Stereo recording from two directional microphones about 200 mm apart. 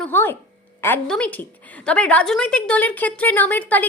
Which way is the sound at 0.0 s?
10° left (ahead or behind).